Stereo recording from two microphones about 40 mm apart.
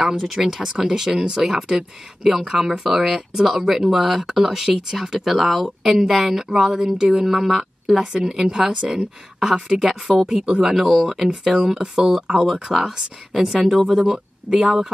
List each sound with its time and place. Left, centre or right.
0.4 s speech: centre
2.8 s a woman's voice: centre
7.2 s a woman's voice: centre
12.6 s speech: centre
13.9 s speech: centre
14.4 s speech: right